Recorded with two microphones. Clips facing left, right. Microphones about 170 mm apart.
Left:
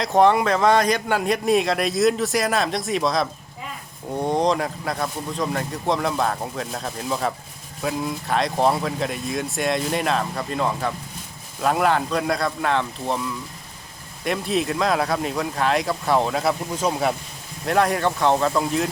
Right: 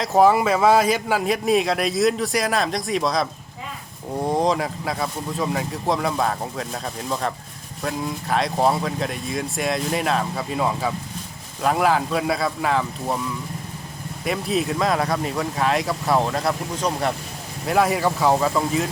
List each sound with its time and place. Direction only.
0.0 s a man's voice: 5° right (ahead or behind)